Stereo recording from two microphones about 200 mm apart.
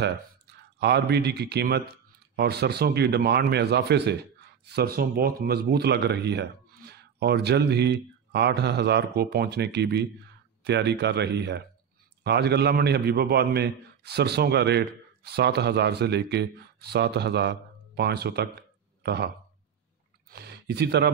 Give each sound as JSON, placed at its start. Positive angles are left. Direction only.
{"t": 0.7, "sound": "a man's voice", "side_deg": -55}
{"t": 20.3, "sound": "speech", "side_deg": -55}